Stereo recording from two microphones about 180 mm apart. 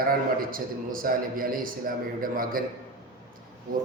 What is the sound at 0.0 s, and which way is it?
A man's voice, 55° right (ahead or behind).